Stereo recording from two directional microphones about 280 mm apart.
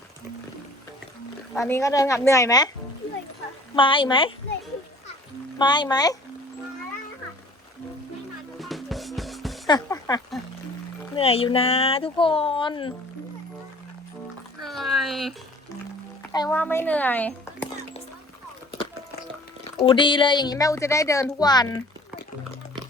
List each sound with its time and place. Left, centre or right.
1.5 s a woman's voice: centre
3.8 s a woman's voice: centre
5.5 s a woman's voice: centre
8.5 s music: centre
9.6 s a sound: centre
11.1 s speech: left
14.6 s a sound: centre
16.3 s speech: centre
19.8 s a woman's voice: centre